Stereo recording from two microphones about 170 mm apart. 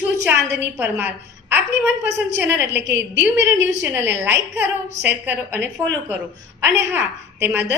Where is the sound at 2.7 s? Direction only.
90° right.